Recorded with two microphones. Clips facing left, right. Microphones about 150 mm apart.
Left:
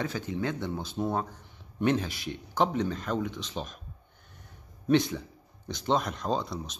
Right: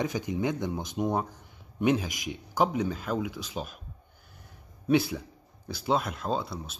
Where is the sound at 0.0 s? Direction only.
15° right (ahead or behind).